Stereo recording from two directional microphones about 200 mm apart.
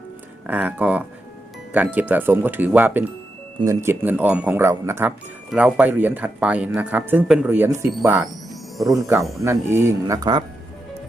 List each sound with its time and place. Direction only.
0.4 s speech: 10° right (ahead or behind)
8.8 s speech: centre (ahead or behind)
9.4 s speech: 15° right (ahead or behind)